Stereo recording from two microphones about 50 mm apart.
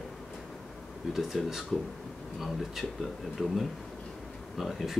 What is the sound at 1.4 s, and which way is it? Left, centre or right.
Speech, centre.